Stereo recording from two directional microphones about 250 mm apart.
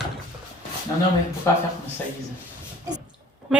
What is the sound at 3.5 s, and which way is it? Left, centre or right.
Speech, centre.